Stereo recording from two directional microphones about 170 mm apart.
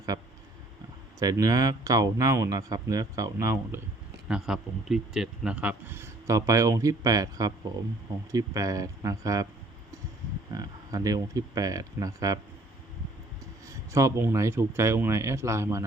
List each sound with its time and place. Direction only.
1.2 s speech: 20° right (ahead or behind)
4.3 s a man's voice: 5° right (ahead or behind); by 9.5 s 20° right (ahead or behind)
10.5 s speech: 20° right (ahead or behind)
13.7 s a man's voice: 15° right (ahead or behind)